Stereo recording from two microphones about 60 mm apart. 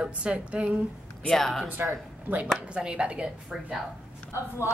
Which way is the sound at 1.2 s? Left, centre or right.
Centre.